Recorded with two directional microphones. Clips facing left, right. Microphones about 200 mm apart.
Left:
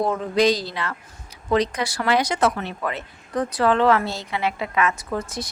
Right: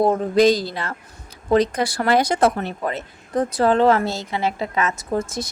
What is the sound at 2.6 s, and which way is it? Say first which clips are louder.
A woman's voice: right 3 dB; 40° right (ahead or behind).